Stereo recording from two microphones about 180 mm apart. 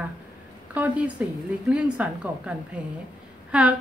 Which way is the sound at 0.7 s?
10° right (ahead or behind).